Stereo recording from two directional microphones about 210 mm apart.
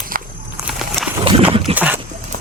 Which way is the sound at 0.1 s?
40° right (ahead or behind).